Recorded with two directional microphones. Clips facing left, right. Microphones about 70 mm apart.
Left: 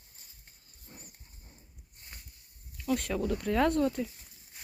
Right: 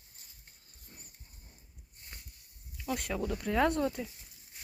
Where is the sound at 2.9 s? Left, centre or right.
Centre.